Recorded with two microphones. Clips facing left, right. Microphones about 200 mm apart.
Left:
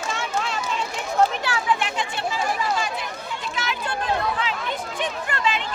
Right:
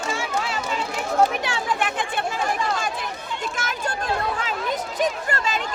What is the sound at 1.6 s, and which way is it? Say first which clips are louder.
Chatter: left 1 dB; 50° right (ahead or behind).